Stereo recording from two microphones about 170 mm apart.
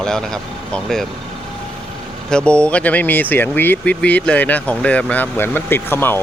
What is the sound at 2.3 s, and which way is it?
Speech, 5° left (ahead or behind).